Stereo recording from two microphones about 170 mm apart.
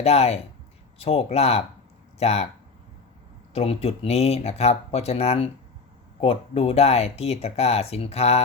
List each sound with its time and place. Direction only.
0.0 s speech: 35° left (ahead or behind)
3.5 s speech: 35° left (ahead or behind)